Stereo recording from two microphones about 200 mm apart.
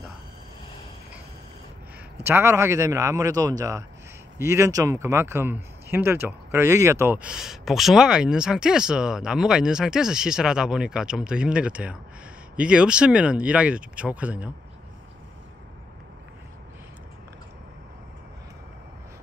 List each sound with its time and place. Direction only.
2.2 s speech: 15° right (ahead or behind)